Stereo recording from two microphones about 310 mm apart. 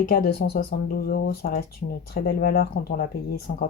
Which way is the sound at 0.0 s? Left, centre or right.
Left.